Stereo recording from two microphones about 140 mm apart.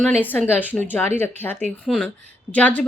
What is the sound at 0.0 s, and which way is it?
Speech, 10° left (ahead or behind).